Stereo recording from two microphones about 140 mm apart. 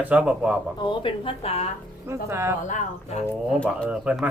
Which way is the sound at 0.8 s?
35° left (ahead or behind).